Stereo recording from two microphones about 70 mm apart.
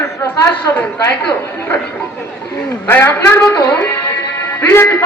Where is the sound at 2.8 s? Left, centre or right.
Left.